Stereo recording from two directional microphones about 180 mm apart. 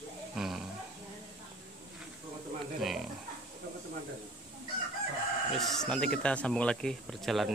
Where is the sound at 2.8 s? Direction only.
Centre (ahead or behind).